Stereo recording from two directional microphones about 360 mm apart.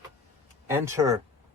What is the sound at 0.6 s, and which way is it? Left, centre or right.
Speech, centre.